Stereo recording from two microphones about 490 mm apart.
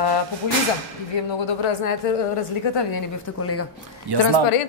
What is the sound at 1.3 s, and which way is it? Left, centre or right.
Speech, left.